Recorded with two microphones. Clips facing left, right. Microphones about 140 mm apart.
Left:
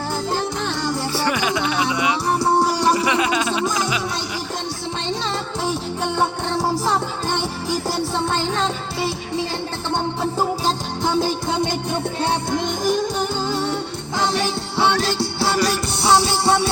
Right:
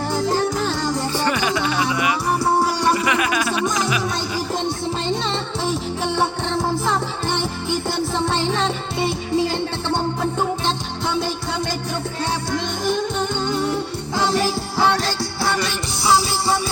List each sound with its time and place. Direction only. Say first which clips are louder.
0.3 s music: right 4 dB; centre (ahead or behind)
1.1 s music: left 1 dB; 10° left (ahead or behind)
2.4 s music: left 2 dB; centre (ahead or behind)
2.9 s music: left 1 dB; 20° left (ahead or behind)
6.1 s music: even; centre (ahead or behind)
7.9 s music: right 1 dB; centre (ahead or behind)
12.5 s music: left 2 dB; 15° left (ahead or behind)
15.2 s music: left 2 dB; 30° left (ahead or behind)